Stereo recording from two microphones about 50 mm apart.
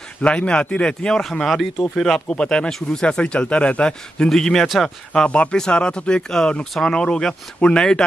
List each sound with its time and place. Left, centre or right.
0.2 s speech: left
4.3 s speech: centre